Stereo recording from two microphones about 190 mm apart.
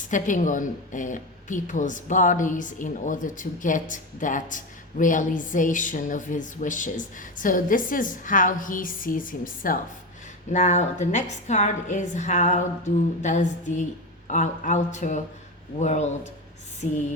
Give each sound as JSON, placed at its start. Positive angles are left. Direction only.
{"t": 0.1, "sound": "a woman's voice", "side_deg": 40}